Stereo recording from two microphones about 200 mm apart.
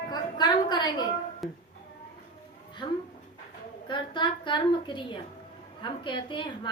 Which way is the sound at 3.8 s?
25° left (ahead or behind).